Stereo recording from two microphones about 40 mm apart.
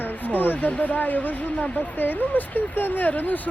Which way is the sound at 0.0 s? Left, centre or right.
Left.